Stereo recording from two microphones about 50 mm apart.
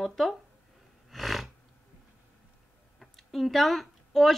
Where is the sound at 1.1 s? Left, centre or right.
Centre.